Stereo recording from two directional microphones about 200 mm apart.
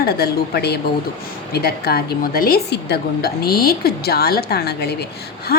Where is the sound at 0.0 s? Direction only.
50° left (ahead or behind).